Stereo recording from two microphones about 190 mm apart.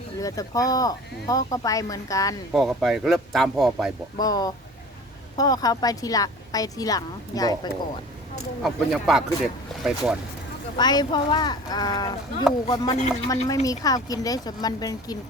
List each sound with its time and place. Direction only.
0.2 s speech: 20° left (ahead or behind)
2.5 s speech: centre (ahead or behind)
4.2 s a woman's voice: 20° left (ahead or behind)
8.6 s speech: centre (ahead or behind)
10.8 s a woman's voice: 20° left (ahead or behind)